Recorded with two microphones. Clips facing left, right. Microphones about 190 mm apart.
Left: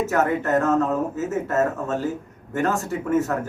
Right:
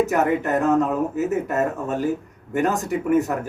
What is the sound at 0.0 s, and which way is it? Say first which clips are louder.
Speech: right 2 dB; 15° right (ahead or behind).